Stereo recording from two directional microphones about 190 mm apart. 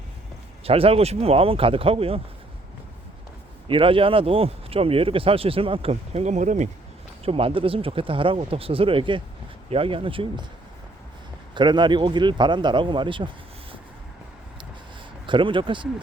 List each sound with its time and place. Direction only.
0.6 s speech: 30° right (ahead or behind)
3.7 s speech: 30° right (ahead or behind)
11.5 s speech: 25° right (ahead or behind)
15.3 s speech: 25° right (ahead or behind)